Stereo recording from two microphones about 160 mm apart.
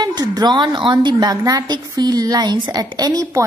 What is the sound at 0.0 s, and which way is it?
A woman's voice, 25° right (ahead or behind).